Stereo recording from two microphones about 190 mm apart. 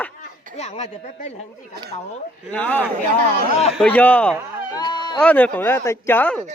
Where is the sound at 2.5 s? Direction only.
10° left (ahead or behind).